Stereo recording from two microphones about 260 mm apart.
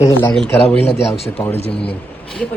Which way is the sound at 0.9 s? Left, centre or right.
Left.